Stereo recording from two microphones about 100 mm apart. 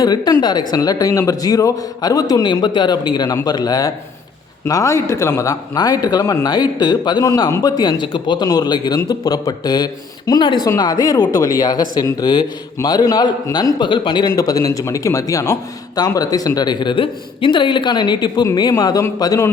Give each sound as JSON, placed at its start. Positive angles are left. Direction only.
{"t": 0.0, "sound": "a man's voice", "side_deg": 40}
{"t": 2.4, "sound": "a man's voice", "side_deg": 50}
{"t": 8.4, "sound": "a man's voice", "side_deg": 40}